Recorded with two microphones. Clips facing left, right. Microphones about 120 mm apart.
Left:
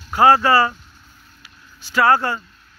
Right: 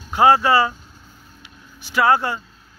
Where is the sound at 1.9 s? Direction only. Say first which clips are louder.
Left 1 dB; 15° right (ahead or behind).